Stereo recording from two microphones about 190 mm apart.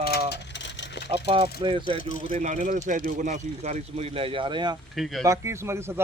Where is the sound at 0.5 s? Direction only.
70° left (ahead or behind).